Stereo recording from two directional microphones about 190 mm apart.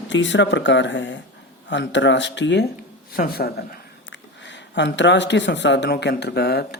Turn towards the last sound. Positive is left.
turn(degrees=60)  # may be behind; listen again after turning